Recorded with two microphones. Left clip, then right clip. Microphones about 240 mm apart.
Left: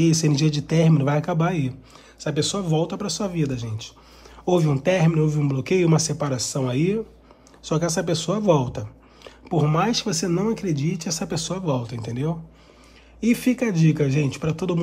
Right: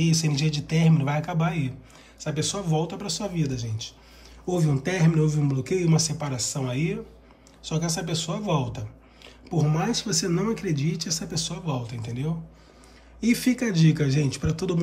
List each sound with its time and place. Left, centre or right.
0.0 s speech: centre
4.5 s speech: centre
5.9 s speech: centre
9.8 s speech: centre
10.3 s speech: centre
10.6 s speech: centre
11.2 s speech: centre
13.2 s speech: centre